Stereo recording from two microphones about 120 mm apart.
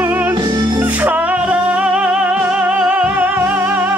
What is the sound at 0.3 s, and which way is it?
Music, 35° right (ahead or behind).